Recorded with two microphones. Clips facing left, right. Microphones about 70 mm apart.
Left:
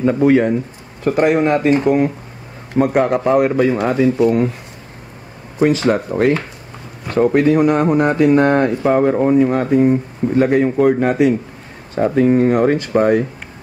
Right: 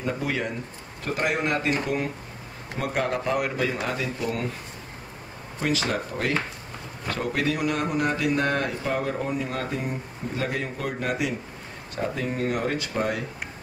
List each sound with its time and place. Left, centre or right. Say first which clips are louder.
0.0 s a man's voice: left 15 dB; left
2.8 s a man's voice: left 12 dB; left
5.6 s speech: left 12 dB; left
7.3 s speech: left 12 dB; left